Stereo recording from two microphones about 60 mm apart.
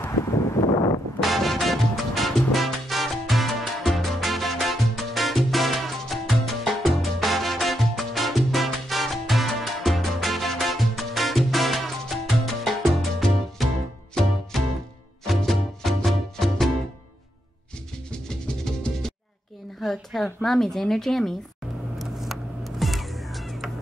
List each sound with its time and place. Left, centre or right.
0.2 s a sound: left
1.2 s music: centre
18.3 s music: centre
19.8 s a woman's voice: centre
21.9 s music: centre